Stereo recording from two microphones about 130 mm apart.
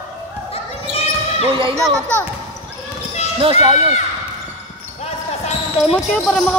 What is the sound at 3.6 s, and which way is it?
Speech, 45° right (ahead or behind).